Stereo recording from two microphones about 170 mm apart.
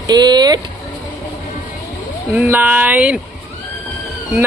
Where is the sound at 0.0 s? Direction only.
25° right (ahead or behind).